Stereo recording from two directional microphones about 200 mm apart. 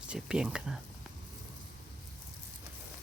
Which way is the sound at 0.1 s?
5° right (ahead or behind).